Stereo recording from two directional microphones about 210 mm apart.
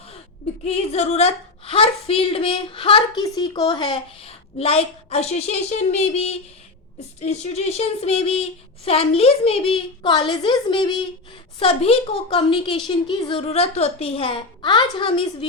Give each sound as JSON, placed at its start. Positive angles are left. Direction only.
{"t": 0.6, "sound": "a woman's voice", "side_deg": 30}